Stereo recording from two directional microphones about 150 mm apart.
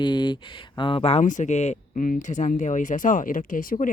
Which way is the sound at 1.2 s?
55° left (ahead or behind).